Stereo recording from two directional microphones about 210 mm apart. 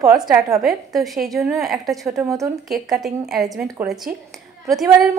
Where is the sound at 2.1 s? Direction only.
15° right (ahead or behind).